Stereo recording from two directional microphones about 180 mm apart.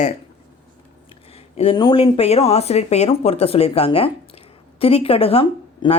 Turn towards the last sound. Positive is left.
turn(degrees=30)  # may be behind; listen again after turning